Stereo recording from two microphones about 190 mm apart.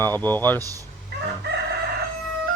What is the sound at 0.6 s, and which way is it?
Speech, 15° right (ahead or behind).